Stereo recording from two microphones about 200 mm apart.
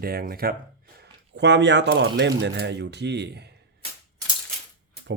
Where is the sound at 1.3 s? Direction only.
60° right (ahead or behind).